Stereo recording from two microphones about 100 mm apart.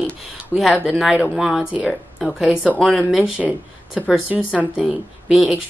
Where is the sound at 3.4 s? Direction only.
15° right (ahead or behind).